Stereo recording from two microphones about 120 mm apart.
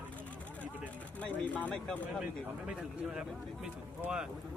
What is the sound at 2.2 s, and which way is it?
A man's voice, 10° right (ahead or behind).